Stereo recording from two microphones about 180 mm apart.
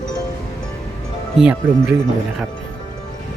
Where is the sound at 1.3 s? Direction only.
5° right (ahead or behind).